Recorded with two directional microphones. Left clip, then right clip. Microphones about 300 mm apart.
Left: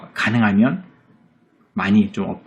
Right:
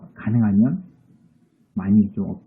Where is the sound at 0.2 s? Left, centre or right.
Centre.